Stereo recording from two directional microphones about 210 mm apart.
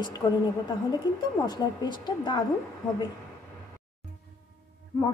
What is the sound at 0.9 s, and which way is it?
A woman's voice, 20° left (ahead or behind).